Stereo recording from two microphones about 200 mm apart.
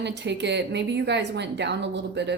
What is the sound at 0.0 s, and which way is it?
A woman's voice, 60° right (ahead or behind).